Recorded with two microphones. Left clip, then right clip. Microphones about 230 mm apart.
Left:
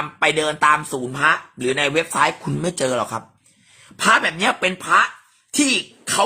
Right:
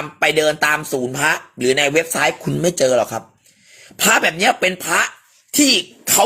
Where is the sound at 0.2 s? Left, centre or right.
Centre.